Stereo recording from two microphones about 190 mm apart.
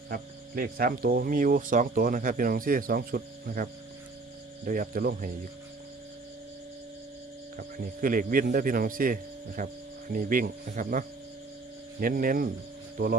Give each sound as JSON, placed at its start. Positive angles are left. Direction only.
{"t": 0.1, "sound": "speech", "side_deg": -50}
{"t": 7.8, "sound": "speech", "side_deg": -45}